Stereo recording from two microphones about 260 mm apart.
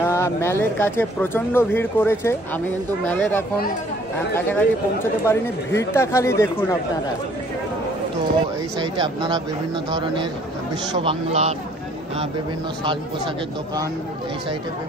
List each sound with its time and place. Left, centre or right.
0.0 s speech: centre
8.7 s speech: centre
11.0 s speech: right